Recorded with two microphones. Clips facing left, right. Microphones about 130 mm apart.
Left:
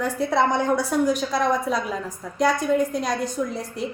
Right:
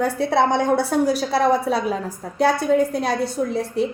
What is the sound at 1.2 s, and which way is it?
Speech, 70° right (ahead or behind).